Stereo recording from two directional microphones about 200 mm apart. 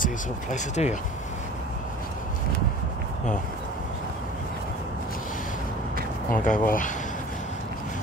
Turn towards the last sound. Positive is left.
turn(degrees=40)  # may be behind; listen again after turning